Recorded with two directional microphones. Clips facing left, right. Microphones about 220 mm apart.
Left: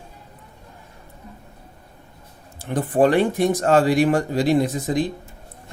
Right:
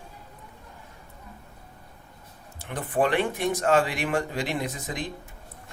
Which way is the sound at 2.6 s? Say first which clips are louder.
Left 8 dB; 35° left (ahead or behind).